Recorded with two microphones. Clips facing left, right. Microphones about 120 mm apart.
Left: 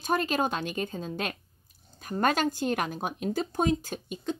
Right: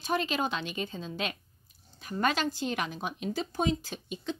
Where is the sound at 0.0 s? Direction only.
45° left (ahead or behind).